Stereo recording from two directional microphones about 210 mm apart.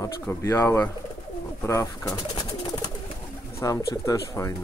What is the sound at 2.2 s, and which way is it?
Bird, 20° left (ahead or behind).